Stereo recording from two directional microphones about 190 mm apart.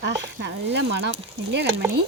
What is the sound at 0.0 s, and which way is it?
Speech, 65° right (ahead or behind).